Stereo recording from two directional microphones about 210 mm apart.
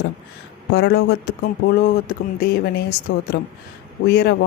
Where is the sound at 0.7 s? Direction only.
50° left (ahead or behind).